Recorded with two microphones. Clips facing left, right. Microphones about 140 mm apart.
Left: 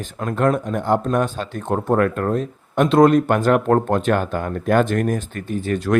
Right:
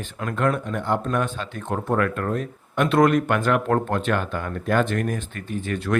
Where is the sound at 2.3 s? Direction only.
25° left (ahead or behind).